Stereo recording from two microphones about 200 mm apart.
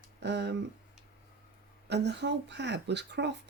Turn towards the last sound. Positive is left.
turn(degrees=-60)  # may be behind; listen again after turning